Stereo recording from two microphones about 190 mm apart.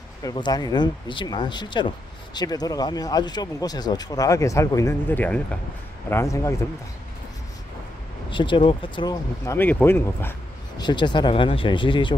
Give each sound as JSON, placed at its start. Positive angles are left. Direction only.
{"t": 0.2, "sound": "a man's voice", "side_deg": 20}
{"t": 8.3, "sound": "speech", "side_deg": 25}
{"t": 10.8, "sound": "speech", "side_deg": 25}